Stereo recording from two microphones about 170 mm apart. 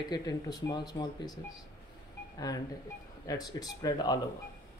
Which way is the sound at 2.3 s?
20° left (ahead or behind).